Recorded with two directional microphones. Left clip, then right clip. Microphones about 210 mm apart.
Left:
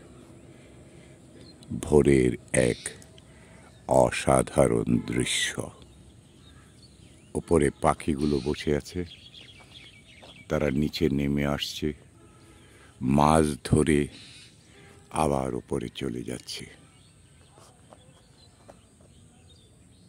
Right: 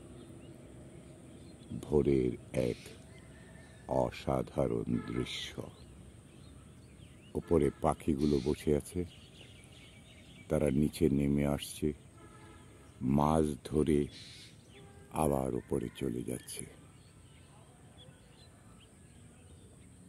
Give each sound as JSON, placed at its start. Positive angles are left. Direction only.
{"t": 1.8, "sound": "speech", "side_deg": 25}
{"t": 7.3, "sound": "speech", "side_deg": 15}
{"t": 10.4, "sound": "speech", "side_deg": 5}
{"t": 13.0, "sound": "speech", "side_deg": 15}
{"t": 14.1, "sound": "a sound", "side_deg": -55}
{"t": 15.0, "sound": "speech", "side_deg": 10}